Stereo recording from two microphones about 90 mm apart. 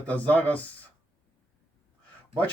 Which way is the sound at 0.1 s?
15° left (ahead or behind).